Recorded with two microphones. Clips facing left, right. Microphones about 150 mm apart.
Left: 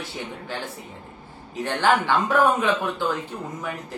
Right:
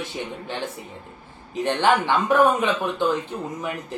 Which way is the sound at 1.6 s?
20° right (ahead or behind).